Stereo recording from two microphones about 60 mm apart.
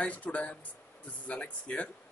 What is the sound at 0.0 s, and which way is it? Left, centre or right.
Speech, left.